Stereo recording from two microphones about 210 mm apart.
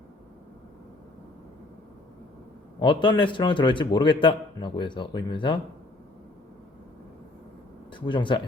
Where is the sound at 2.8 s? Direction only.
20° left (ahead or behind).